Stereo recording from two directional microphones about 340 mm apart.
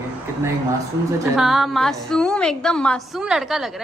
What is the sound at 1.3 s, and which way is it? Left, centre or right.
A woman's voice, centre.